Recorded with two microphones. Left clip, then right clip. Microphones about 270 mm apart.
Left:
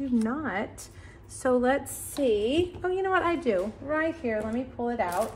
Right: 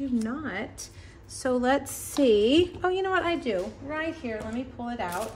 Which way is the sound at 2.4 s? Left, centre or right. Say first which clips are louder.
Right 5 dB; right.